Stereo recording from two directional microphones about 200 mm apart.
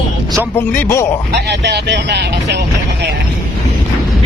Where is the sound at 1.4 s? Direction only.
60° right (ahead or behind).